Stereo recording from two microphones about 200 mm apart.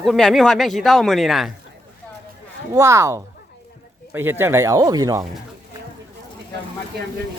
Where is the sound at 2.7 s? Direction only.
15° right (ahead or behind).